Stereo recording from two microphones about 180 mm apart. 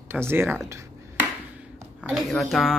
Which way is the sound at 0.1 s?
15° right (ahead or behind).